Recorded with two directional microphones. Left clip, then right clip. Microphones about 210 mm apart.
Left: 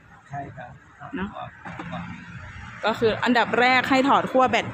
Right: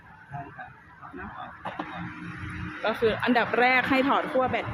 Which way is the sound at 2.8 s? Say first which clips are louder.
Left 3 dB; 15° left (ahead or behind).